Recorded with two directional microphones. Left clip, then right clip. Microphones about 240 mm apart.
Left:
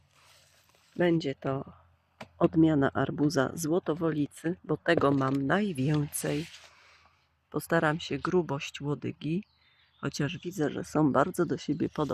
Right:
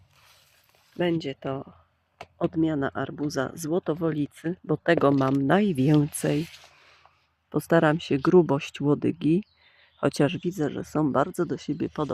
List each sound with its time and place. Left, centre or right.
0.9 s speech: centre
7.5 s speech: centre
10.5 s speech: centre